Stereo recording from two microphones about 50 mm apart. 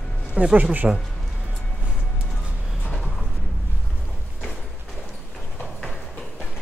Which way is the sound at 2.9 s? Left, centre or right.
Centre.